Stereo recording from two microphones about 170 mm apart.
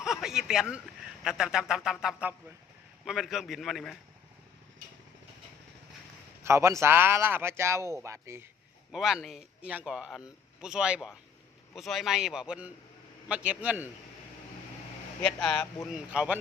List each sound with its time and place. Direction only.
0.0 s speech: 5° right (ahead or behind)
6.4 s speech: 15° right (ahead or behind)
8.9 s speech: 5° right (ahead or behind)
15.2 s speech: 5° left (ahead or behind)
16.1 s speech: 5° right (ahead or behind)